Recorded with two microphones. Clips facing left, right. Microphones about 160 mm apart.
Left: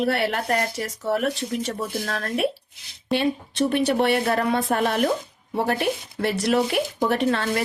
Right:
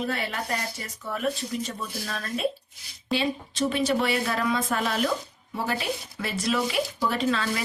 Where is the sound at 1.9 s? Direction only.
55° left (ahead or behind).